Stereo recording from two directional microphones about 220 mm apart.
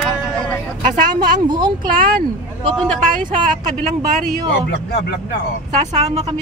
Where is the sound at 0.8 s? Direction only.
35° right (ahead or behind).